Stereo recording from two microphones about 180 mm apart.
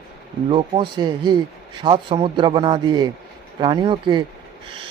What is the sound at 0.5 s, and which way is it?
A man's voice, 25° right (ahead or behind).